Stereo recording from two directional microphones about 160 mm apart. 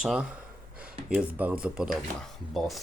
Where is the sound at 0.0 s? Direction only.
5° right (ahead or behind).